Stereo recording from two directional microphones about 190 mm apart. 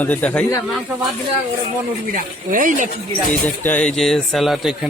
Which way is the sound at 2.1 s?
45° right (ahead or behind).